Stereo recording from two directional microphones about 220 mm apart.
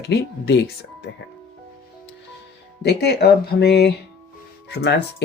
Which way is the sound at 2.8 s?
50° left (ahead or behind).